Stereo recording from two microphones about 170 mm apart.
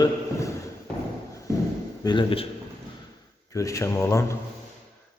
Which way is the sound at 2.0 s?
30° left (ahead or behind).